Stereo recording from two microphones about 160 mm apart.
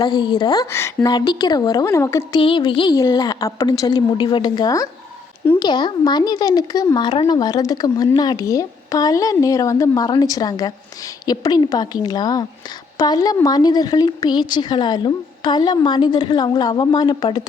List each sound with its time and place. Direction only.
0.0 s speech: 25° left (ahead or behind)
2.4 s speech: 30° left (ahead or behind)